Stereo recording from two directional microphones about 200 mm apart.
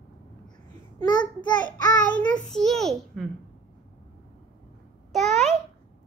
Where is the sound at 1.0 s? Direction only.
20° left (ahead or behind).